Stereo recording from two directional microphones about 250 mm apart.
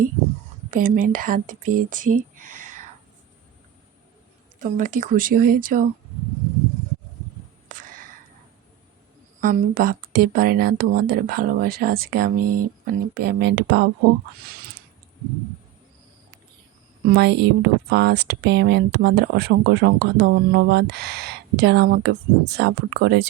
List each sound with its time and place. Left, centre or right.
0.7 s speech: right
4.6 s speech: right
7.7 s a sound: right
9.4 s speech: right
17.1 s speech: right